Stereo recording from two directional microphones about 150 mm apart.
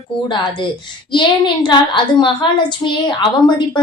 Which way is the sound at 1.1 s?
30° left (ahead or behind).